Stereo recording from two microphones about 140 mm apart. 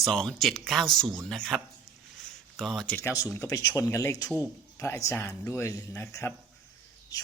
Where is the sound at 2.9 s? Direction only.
20° left (ahead or behind).